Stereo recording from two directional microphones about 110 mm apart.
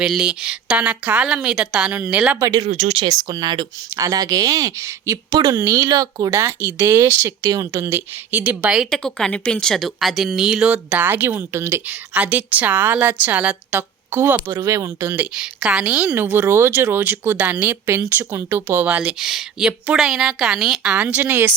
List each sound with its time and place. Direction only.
0.0 s speech: 5° right (ahead or behind)
2.4 s speech: 35° right (ahead or behind)
2.6 s speech: 90° right
3.0 s speech: 35° right (ahead or behind)
5.9 s speech: 35° right (ahead or behind)
6.3 s speech: 20° right (ahead or behind)
9.0 s speech: 5° left (ahead or behind)
10.8 s speech: 15° right (ahead or behind)
15.1 s speech: 10° right (ahead or behind)